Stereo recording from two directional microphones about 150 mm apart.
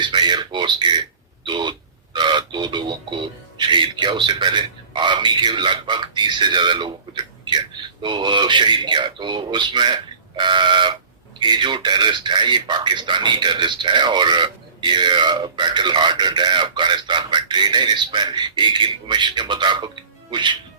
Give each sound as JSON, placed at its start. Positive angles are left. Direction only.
{"t": 0.0, "sound": "speech", "side_deg": -30}